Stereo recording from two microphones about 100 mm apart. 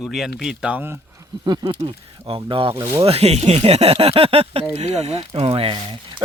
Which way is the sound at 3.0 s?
90° right.